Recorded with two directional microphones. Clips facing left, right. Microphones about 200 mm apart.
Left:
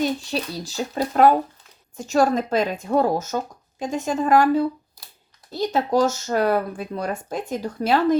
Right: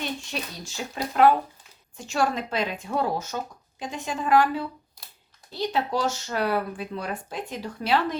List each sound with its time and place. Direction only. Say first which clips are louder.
0.0 s a child's voice: left 8 dB; 35° left (ahead or behind)